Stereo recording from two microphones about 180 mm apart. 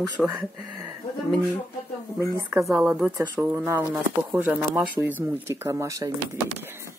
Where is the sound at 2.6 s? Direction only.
Centre (ahead or behind); by 6.1 s 20° right (ahead or behind).